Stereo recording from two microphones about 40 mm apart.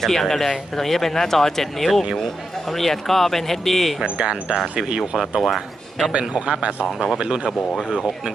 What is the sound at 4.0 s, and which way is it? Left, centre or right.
Speech, right.